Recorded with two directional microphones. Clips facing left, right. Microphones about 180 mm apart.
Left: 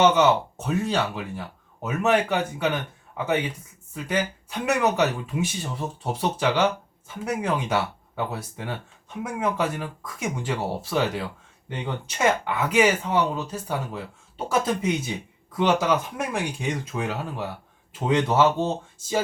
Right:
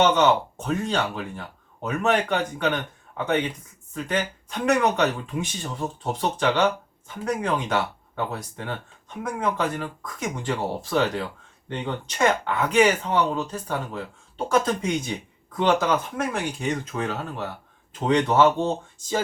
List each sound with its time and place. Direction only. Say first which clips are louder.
0.0 s speech: left 1 dB; 5° left (ahead or behind)